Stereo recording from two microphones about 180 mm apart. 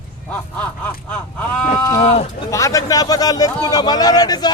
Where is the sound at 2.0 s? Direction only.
35° left (ahead or behind).